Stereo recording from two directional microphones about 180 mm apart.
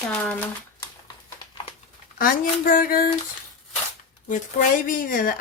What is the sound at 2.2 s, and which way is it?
Speech, 50° left (ahead or behind).